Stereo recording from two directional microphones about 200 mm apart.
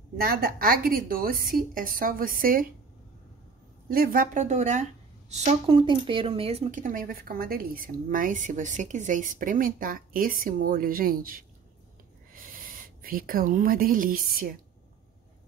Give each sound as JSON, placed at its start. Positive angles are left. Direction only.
{"t": 0.2, "sound": "a woman's voice", "side_deg": -45}
{"t": 3.9, "sound": "speech", "side_deg": -45}
{"t": 12.3, "sound": "a sound", "side_deg": -45}
{"t": 14.3, "sound": "a woman's voice", "side_deg": -45}